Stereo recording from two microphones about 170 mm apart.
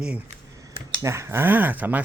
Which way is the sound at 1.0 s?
15° right (ahead or behind).